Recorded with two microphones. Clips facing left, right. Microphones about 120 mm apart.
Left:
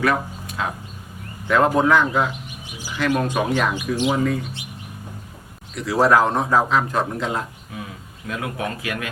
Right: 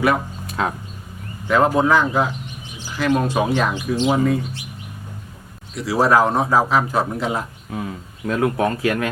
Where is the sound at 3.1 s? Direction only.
15° right (ahead or behind).